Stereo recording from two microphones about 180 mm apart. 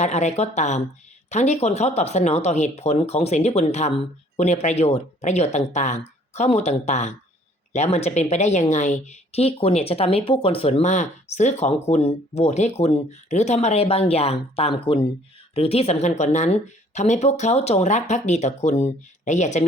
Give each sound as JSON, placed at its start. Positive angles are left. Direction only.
{"t": 0.0, "sound": "a woman's voice", "side_deg": 40}